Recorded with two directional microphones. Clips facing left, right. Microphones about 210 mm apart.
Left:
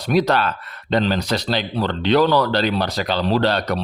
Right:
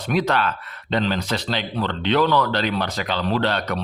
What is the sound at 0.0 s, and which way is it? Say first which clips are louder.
A man's voice: left 3 dB; 40° left (ahead or behind).